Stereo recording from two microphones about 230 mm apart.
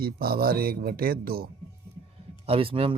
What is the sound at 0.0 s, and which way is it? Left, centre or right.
Speech, right.